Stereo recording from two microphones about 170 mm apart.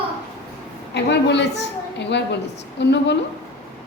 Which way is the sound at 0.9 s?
90° left.